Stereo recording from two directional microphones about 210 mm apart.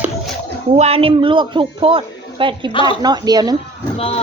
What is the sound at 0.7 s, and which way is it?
A man's voice, 30° right (ahead or behind).